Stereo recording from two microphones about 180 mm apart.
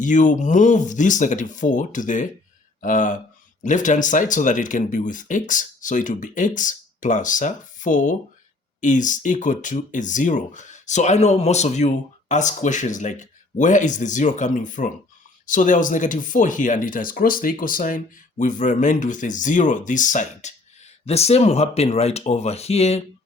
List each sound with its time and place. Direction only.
0.0 s speech: 45° left (ahead or behind)